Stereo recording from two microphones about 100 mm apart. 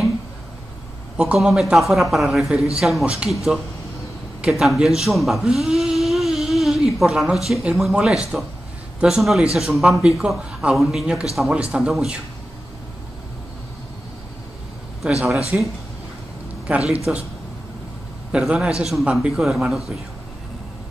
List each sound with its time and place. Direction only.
1.1 s speech: 10° right (ahead or behind)
4.4 s a man's voice: centre (ahead or behind)
15.5 s a man's voice: 15° right (ahead or behind)
18.3 s a man's voice: 10° right (ahead or behind)